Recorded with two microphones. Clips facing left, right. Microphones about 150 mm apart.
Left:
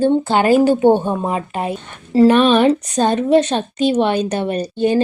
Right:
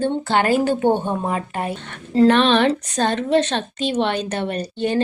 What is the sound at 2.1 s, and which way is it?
A woman's voice, 10° left (ahead or behind).